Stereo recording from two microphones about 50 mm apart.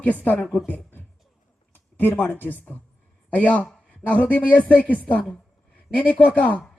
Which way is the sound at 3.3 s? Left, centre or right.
Left.